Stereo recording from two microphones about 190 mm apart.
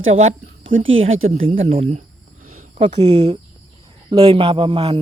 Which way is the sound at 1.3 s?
30° right (ahead or behind).